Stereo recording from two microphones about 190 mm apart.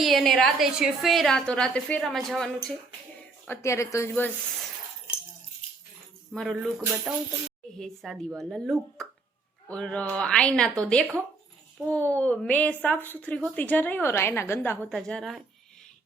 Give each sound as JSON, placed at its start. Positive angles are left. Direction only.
{"t": 0.0, "sound": "a woman's voice", "side_deg": 0}
{"t": 3.4, "sound": "a woman's voice", "side_deg": 15}
{"t": 6.3, "sound": "a woman's voice", "side_deg": 5}
{"t": 6.6, "sound": "a woman's voice", "side_deg": -5}